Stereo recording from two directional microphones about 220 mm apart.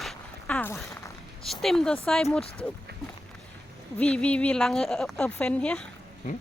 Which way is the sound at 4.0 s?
5° left (ahead or behind).